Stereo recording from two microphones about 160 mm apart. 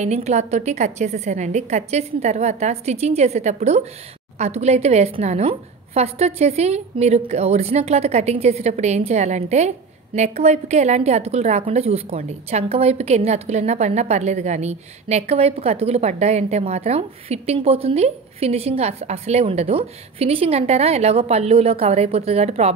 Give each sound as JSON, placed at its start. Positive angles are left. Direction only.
{"t": 0.0, "sound": "a woman's voice", "side_deg": -45}